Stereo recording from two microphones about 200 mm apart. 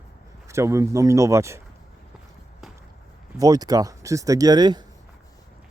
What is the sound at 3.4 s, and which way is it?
Speech, 20° right (ahead or behind).